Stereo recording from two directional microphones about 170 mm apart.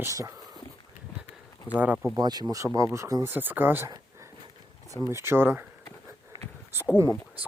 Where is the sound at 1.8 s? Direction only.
5° right (ahead or behind).